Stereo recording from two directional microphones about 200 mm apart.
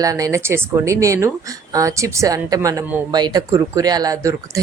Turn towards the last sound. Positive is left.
turn(degrees=-15)  # may be behind; listen again after turning